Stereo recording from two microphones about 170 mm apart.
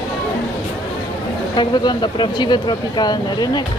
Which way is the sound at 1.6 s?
25° left (ahead or behind).